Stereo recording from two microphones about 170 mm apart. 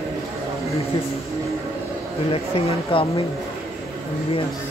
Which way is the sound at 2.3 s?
35° left (ahead or behind).